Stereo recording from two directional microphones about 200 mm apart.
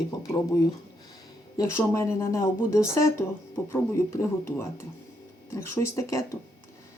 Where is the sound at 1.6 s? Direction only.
15° left (ahead or behind).